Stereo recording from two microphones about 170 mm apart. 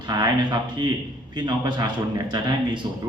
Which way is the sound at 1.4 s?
25° right (ahead or behind).